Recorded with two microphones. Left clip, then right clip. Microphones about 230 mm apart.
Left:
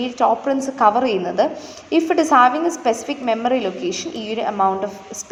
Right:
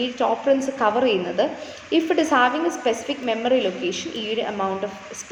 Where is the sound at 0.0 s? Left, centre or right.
Left.